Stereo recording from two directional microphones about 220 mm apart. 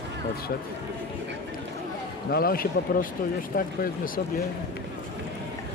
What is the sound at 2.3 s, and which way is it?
Speech, 40° left (ahead or behind).